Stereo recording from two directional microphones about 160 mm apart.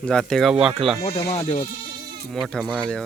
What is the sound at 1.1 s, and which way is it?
Speech, 35° left (ahead or behind).